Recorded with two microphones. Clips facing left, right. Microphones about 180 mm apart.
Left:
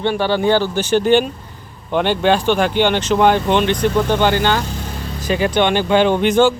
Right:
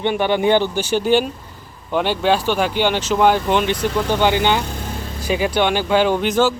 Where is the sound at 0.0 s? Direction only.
20° right (ahead or behind).